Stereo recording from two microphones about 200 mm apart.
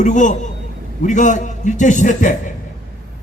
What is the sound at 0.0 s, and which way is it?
A man's voice, 40° left (ahead or behind).